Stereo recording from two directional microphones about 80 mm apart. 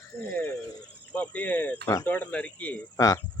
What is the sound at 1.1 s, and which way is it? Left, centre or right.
Cricket, centre.